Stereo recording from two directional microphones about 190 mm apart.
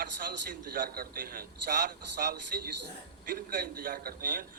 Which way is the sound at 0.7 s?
50° right (ahead or behind).